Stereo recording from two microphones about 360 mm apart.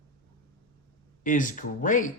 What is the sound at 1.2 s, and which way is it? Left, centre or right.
Speech, left.